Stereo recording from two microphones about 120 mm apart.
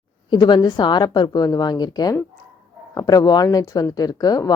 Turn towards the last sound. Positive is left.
turn(degrees=30)  # may be behind; listen again after turning